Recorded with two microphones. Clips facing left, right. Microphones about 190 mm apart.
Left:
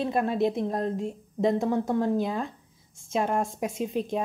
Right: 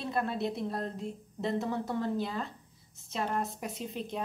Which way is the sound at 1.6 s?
45° left (ahead or behind).